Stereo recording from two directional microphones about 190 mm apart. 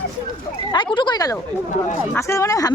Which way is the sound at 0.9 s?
25° left (ahead or behind).